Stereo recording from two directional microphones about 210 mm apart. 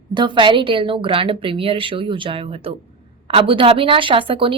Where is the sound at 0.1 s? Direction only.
20° right (ahead or behind).